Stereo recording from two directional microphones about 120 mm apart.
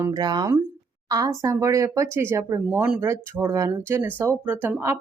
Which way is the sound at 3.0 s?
25° right (ahead or behind).